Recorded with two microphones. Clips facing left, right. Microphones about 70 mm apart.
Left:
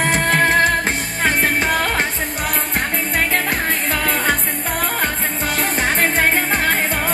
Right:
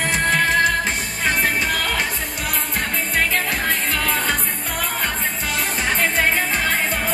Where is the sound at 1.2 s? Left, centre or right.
Left.